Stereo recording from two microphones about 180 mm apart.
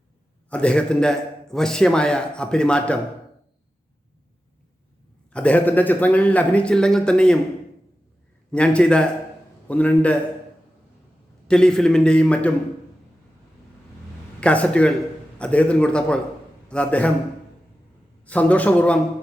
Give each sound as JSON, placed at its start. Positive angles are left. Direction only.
{"t": 0.5, "sound": "a man's voice", "side_deg": 5}
{"t": 5.3, "sound": "a man's voice", "side_deg": 5}
{"t": 8.5, "sound": "a man's voice", "side_deg": 5}
{"t": 11.4, "sound": "a man's voice", "side_deg": 5}
{"t": 14.4, "sound": "a man's voice", "side_deg": 5}
{"t": 18.3, "sound": "a man's voice", "side_deg": 10}